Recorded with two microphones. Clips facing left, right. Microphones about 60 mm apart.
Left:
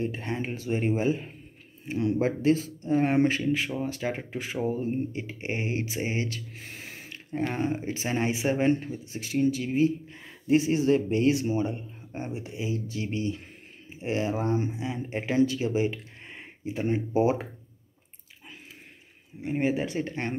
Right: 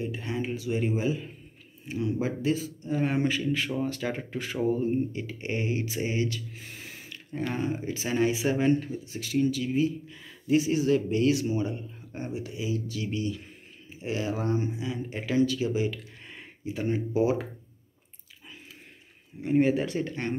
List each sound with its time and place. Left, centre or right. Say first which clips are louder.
0.0 s speech: left 1 dB; left
3.5 s speech: even; centre; by 17.5 s left
19.4 s speech: right 3 dB; centre
20.0 s speech: even; left